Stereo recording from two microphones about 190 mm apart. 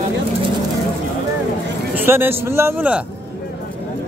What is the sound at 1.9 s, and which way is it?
Speech, 10° right (ahead or behind).